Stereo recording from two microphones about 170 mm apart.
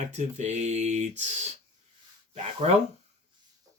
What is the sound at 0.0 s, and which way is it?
Speech, 40° right (ahead or behind).